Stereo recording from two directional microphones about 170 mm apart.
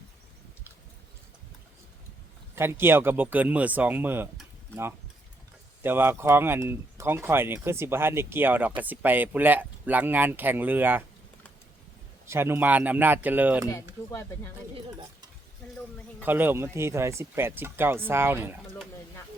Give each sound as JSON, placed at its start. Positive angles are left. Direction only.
{"t": 2.6, "sound": "speech", "side_deg": -15}
{"t": 5.8, "sound": "speech", "side_deg": -10}
{"t": 12.3, "sound": "speech", "side_deg": -15}
{"t": 13.7, "sound": "speech", "side_deg": 20}
{"t": 16.2, "sound": "speech", "side_deg": -10}